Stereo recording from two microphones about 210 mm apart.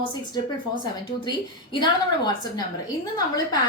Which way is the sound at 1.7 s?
20° left (ahead or behind).